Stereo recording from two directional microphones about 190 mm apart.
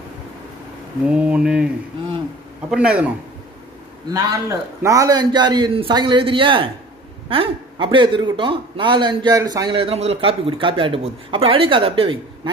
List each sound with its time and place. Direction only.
1.0 s mantra: 5° right (ahead or behind)
2.7 s mantra: 5° right (ahead or behind)
4.1 s a man's voice: 15° right (ahead or behind)